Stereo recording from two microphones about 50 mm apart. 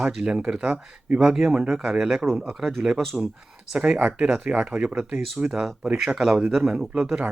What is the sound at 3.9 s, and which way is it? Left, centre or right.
Speech, right.